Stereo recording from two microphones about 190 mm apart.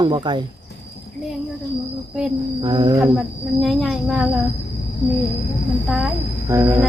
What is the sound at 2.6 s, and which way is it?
Speech, 25° right (ahead or behind).